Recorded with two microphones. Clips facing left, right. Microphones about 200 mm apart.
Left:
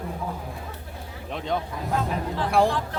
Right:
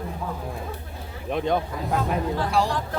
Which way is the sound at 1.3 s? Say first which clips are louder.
Right 5 dB; 50° right (ahead or behind).